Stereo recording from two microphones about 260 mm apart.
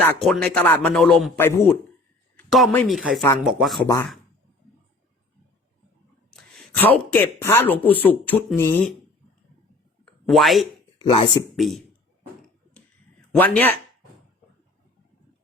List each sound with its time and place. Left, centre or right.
0.0 s speech: centre
3.8 s speech: centre
6.3 s speech: centre
10.2 s speech: centre
10.9 s speech: centre
11.5 s speech: centre
13.3 s speech: centre